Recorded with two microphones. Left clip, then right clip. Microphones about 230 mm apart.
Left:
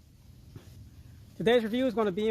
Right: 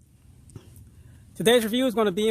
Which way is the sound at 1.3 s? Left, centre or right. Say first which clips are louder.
Right 5 dB; right.